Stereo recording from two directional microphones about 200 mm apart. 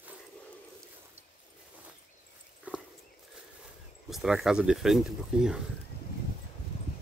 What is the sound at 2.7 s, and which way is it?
Horse, 5° right (ahead or behind).